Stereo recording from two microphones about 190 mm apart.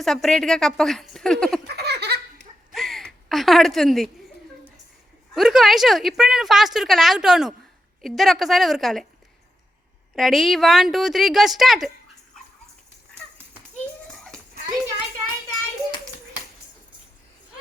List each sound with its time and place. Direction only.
0.0 s a woman's voice: centre (ahead or behind)
1.6 s baby laughter: 60° right (ahead or behind)
2.7 s gasp: centre (ahead or behind)
5.3 s a woman's voice: centre (ahead or behind)
10.2 s a woman's voice: centre (ahead or behind)
14.1 s a sound: centre (ahead or behind)